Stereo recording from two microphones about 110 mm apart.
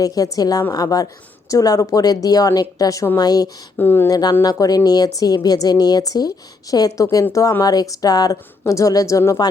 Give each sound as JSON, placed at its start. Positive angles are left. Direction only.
{"t": 0.0, "sound": "a woman's voice", "side_deg": 35}
{"t": 3.8, "sound": "speech", "side_deg": 20}
{"t": 4.1, "sound": "a woman's voice", "side_deg": 35}